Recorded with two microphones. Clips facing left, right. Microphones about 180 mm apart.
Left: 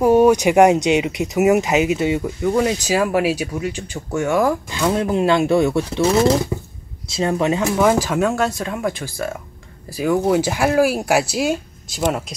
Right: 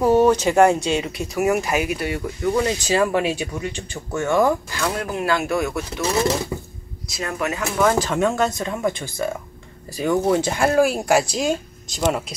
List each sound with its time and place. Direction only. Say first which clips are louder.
0.0 s speech: left 3 dB; 10° left (ahead or behind)
4.6 s speech: left 6 dB; 20° left (ahead or behind)
7.1 s speech: left 7 dB; 25° left (ahead or behind)
8.1 s speech: left 1 dB; centre (ahead or behind)